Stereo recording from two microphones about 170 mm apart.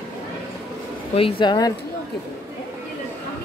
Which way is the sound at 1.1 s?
30° left (ahead or behind).